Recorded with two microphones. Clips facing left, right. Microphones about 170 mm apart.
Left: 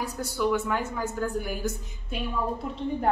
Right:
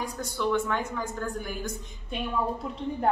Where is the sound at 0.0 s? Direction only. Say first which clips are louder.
Left 2 dB; 5° left (ahead or behind).